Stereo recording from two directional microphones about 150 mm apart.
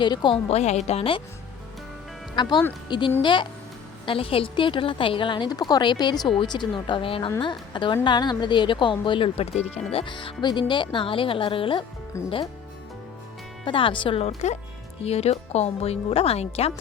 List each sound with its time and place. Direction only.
0.0 s a woman's voice: 30° left (ahead or behind)
2.3 s a woman's voice: 30° left (ahead or behind)
12.1 s speech: 20° left (ahead or behind)
13.7 s a woman's voice: 35° left (ahead or behind)